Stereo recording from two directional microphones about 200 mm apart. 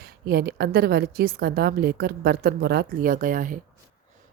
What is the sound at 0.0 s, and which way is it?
Speech, 50° right (ahead or behind).